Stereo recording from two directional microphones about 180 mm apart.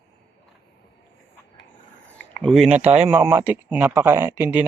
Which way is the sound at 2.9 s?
10° right (ahead or behind).